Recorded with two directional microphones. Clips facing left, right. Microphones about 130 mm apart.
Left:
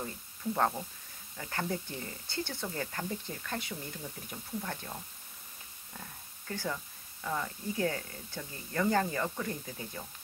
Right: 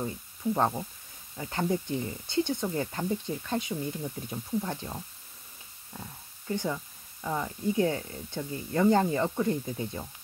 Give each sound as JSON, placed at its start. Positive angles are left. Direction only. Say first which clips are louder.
{"t": 0.0, "sound": "speech", "louder": "right 6 dB", "side_deg": -20}